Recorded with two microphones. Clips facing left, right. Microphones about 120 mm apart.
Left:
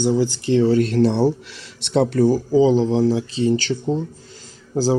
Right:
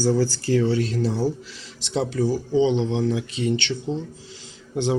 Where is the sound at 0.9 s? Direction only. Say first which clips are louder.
Left 7 dB; 65° left (ahead or behind).